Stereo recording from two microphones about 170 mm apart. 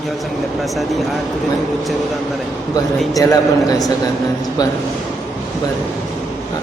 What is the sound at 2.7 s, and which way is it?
A man's voice, 20° left (ahead or behind).